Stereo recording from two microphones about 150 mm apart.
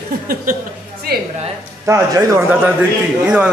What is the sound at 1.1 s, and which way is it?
Speech, 90° right.